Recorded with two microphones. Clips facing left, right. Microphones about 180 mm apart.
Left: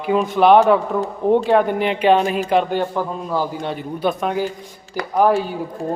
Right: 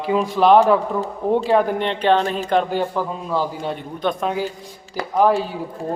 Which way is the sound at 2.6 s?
5° right (ahead or behind).